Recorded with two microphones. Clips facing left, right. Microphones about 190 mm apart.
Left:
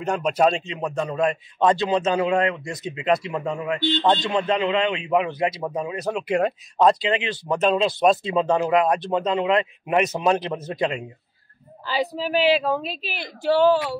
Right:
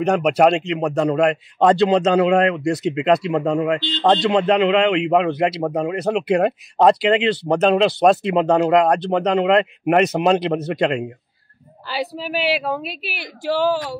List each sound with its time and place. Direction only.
0.0 s speech: 75° right (ahead or behind)
11.9 s speech: 5° right (ahead or behind)